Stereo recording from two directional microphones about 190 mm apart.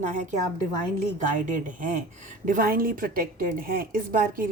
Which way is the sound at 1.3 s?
45° right (ahead or behind).